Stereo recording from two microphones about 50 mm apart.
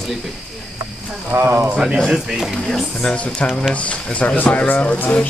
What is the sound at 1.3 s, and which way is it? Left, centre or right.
Speech, right.